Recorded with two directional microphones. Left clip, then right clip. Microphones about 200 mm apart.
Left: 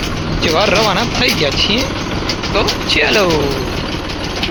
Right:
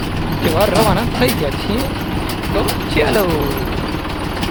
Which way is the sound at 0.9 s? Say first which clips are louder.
Left 3 dB; 5° right (ahead or behind).